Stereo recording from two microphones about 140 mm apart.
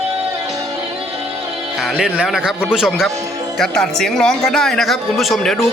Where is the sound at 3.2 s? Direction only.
25° right (ahead or behind).